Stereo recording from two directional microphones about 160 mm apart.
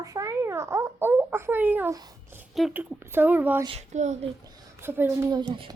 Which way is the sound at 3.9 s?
45° right (ahead or behind).